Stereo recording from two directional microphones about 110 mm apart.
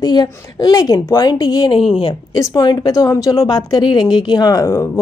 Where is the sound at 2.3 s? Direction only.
35° left (ahead or behind).